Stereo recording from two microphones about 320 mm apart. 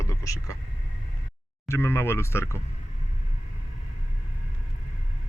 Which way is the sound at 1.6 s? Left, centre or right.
Centre.